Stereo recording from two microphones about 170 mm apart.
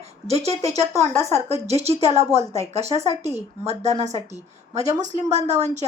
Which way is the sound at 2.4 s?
20° left (ahead or behind).